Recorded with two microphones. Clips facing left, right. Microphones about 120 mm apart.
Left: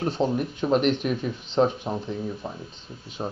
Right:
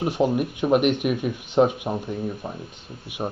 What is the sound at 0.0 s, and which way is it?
Speech, 10° right (ahead or behind).